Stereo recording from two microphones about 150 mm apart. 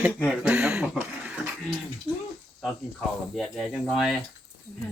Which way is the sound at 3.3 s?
Centre (ahead or behind).